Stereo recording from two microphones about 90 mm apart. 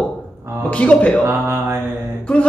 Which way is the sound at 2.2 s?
15° left (ahead or behind).